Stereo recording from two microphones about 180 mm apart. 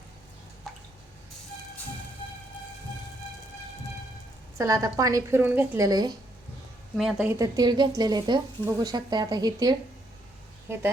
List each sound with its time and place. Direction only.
4.5 s a woman's voice: 20° right (ahead or behind)
6.9 s speech: centre (ahead or behind)
7.3 s a woman's voice: 20° right (ahead or behind)